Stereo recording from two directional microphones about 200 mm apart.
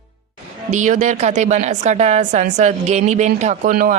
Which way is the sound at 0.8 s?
35° right (ahead or behind).